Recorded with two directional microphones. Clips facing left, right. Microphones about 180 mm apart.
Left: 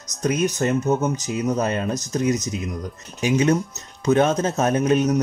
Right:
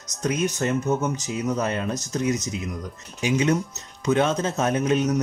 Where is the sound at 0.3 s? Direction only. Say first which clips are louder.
Left 3 dB; 40° left (ahead or behind).